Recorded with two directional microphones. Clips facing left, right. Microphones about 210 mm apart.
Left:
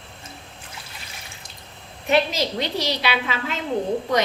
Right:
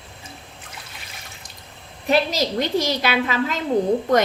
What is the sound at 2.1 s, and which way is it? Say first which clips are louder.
A woman's voice: right 1 dB; 40° right (ahead or behind).